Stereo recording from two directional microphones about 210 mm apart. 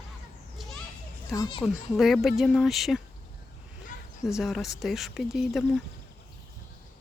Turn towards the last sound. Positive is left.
turn(degrees=0)  # may be behind; listen again after turning